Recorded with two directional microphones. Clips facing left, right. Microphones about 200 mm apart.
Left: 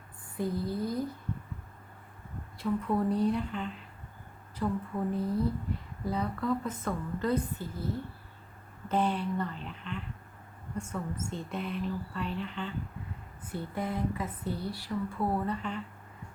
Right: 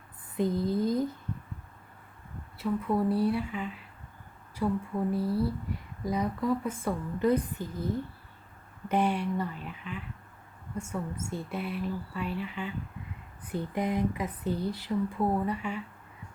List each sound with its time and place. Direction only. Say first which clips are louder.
0.3 s speech: right 4 dB; 20° right (ahead or behind)
2.6 s speech: right 1 dB; 10° right (ahead or behind)
8.9 s speech: right 2 dB; 10° right (ahead or behind)